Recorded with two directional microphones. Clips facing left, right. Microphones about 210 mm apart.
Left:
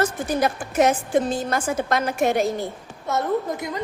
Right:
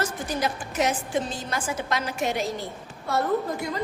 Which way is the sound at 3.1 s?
20° left (ahead or behind).